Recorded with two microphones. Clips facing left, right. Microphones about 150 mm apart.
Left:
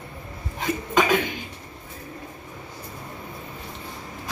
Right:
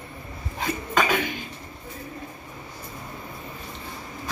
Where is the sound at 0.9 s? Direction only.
20° left (ahead or behind).